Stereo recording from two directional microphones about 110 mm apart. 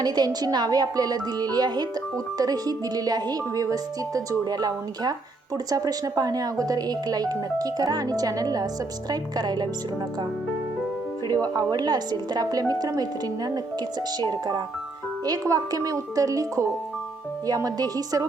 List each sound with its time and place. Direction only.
0.0 s speech: 40° right (ahead or behind)
11.3 s speech: 40° right (ahead or behind)